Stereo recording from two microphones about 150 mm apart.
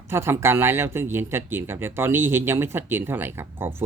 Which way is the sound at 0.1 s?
15° right (ahead or behind).